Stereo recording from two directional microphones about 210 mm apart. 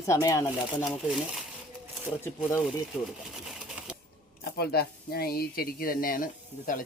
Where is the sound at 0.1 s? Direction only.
15° left (ahead or behind).